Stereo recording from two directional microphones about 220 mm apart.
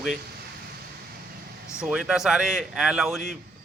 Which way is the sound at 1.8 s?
5° right (ahead or behind).